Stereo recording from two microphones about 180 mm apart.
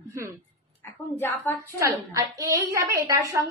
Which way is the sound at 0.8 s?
10° left (ahead or behind).